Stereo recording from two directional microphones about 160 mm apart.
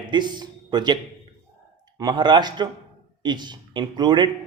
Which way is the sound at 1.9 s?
25° right (ahead or behind).